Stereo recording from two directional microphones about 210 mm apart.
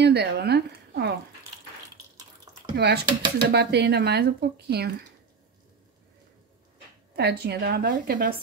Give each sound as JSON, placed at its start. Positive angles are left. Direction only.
{"t": 0.0, "sound": "speech", "side_deg": -50}
{"t": 2.7, "sound": "speech", "side_deg": -50}
{"t": 7.2, "sound": "speech", "side_deg": -50}